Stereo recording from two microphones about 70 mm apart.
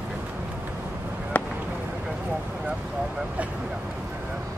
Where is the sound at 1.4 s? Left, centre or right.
Left.